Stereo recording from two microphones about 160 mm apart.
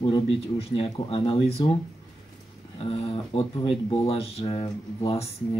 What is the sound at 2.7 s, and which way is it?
Speech, 35° left (ahead or behind).